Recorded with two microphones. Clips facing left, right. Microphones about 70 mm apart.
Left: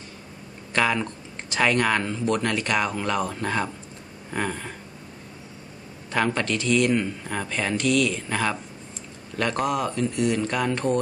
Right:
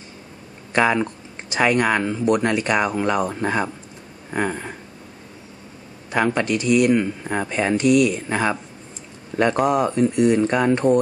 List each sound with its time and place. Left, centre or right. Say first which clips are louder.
0.7 s speech: right 5 dB; centre
6.1 s speech: right 4 dB; centre
9.3 s speech: right 6 dB; right